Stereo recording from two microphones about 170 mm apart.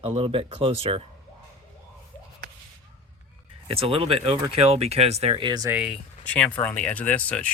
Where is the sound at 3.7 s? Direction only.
35° right (ahead or behind).